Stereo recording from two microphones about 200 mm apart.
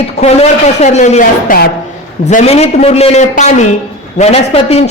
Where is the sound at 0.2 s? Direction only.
35° left (ahead or behind).